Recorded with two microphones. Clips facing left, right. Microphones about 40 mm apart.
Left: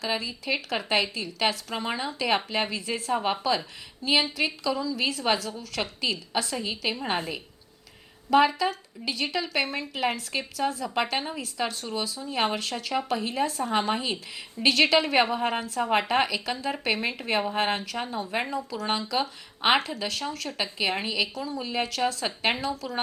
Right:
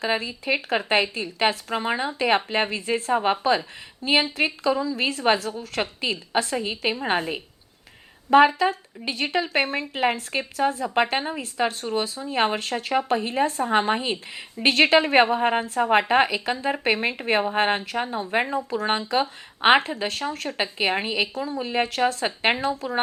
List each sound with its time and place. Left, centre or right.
0.0 s speech: right